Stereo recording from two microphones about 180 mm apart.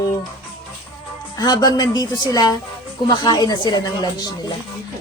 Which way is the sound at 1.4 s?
20° left (ahead or behind).